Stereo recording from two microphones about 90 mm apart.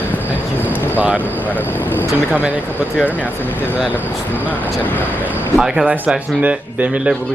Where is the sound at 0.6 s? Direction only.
20° right (ahead or behind).